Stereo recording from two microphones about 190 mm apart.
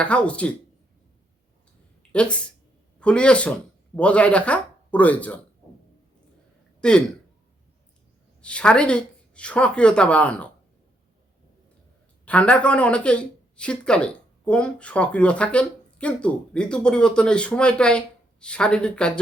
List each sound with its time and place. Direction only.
0.0 s speech: 5° left (ahead or behind)
2.1 s speech: 5° left (ahead or behind)
6.8 s speech: 5° left (ahead or behind)
8.4 s speech: 5° left (ahead or behind)
12.2 s speech: 5° left (ahead or behind)